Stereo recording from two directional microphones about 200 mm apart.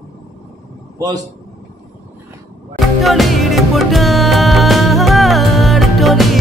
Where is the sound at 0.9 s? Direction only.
20° right (ahead or behind).